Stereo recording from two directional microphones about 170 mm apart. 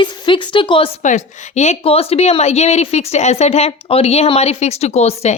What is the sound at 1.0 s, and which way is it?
A woman's voice, 45° left (ahead or behind).